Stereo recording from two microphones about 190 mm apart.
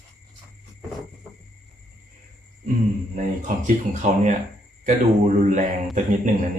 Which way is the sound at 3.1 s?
40° right (ahead or behind).